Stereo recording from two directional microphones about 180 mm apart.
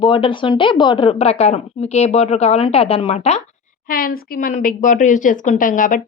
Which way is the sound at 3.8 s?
55° left (ahead or behind).